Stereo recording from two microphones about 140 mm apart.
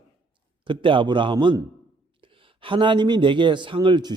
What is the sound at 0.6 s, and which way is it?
A man's voice, 35° right (ahead or behind).